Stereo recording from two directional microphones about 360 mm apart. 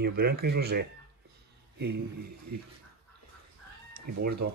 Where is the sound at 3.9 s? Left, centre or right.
Right.